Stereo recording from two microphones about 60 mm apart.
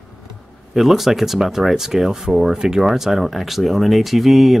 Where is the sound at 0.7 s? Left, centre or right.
Centre.